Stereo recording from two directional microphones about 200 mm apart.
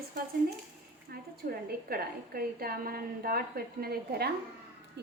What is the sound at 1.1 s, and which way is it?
A woman's voice, 50° right (ahead or behind).